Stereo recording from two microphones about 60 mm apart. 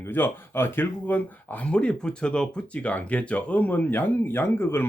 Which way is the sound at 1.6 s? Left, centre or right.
Centre.